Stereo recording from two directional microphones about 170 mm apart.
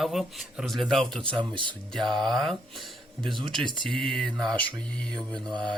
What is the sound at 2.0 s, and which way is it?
Speech, 25° right (ahead or behind).